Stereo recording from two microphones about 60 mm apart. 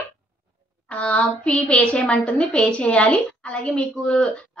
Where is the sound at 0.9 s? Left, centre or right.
Left.